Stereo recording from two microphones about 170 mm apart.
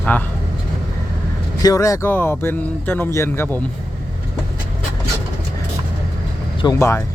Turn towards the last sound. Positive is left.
turn(degrees=15)  # may be behind; listen again after turning